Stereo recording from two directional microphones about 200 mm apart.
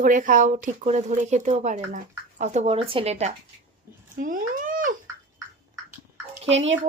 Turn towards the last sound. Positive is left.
turn(degrees=-70)  # may be behind; listen again after turning